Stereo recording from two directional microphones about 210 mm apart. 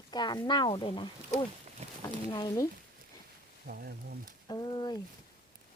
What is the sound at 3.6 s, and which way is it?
Speech, 45° right (ahead or behind).